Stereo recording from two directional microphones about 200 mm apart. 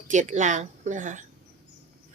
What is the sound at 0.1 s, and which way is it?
Speech, 35° right (ahead or behind).